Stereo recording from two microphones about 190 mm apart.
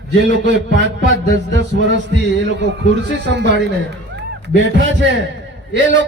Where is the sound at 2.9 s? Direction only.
65° right (ahead or behind).